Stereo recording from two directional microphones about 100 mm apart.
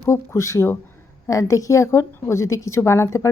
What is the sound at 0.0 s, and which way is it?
A woman's voice, 30° left (ahead or behind).